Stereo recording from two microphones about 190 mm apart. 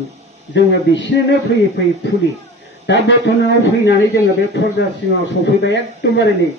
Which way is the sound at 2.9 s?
65° left (ahead or behind).